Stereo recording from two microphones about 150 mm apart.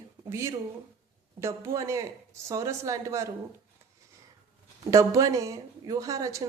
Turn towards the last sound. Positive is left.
turn(degrees=-20)  # may be behind; listen again after turning